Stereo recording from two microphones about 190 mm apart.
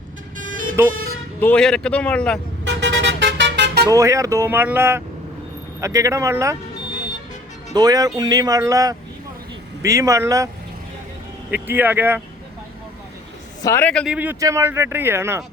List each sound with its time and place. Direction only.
0.8 s speech: 15° right (ahead or behind)
1.4 s speech: 5° left (ahead or behind)
2.6 s vehicle: 70° right (ahead or behind)
3.8 s speech: 15° right (ahead or behind)
7.7 s speech: 20° right (ahead or behind)
11.5 s speech: 10° right (ahead or behind)
13.6 s speech: 15° left (ahead or behind)
14.2 s speech: 15° right (ahead or behind)